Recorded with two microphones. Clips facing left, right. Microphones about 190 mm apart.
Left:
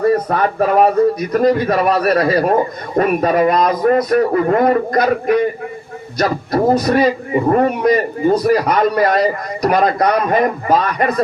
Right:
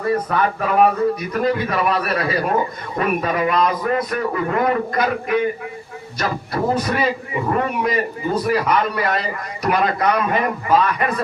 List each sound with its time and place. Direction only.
0.1 s a man's voice: 40° left (ahead or behind)